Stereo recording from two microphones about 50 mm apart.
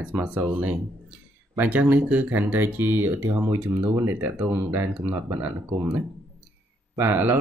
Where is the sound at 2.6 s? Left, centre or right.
Right.